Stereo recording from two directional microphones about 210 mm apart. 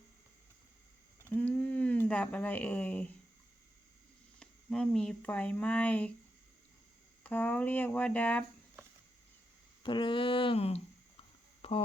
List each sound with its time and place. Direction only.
1.3 s speech: 5° left (ahead or behind)
4.4 s speech: 5° left (ahead or behind)
7.3 s speech: 10° left (ahead or behind)
9.8 s speech: 25° left (ahead or behind)
11.6 s a sound: 30° left (ahead or behind)